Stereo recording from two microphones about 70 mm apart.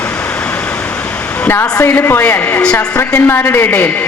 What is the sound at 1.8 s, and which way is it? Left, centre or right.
A woman's voice, left.